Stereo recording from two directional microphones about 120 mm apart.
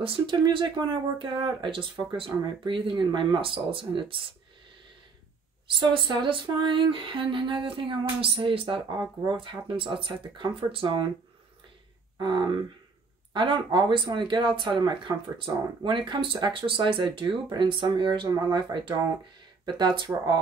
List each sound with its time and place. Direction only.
0.0 s speech: 45° right (ahead or behind)
5.7 s speech: 45° right (ahead or behind)
12.2 s speech: 40° right (ahead or behind)